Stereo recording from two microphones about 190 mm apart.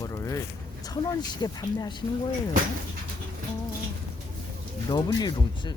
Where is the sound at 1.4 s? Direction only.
20° left (ahead or behind).